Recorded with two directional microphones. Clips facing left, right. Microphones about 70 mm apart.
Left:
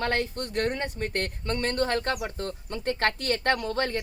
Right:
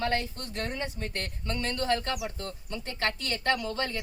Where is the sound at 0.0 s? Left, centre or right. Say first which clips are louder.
Left 2 dB; left.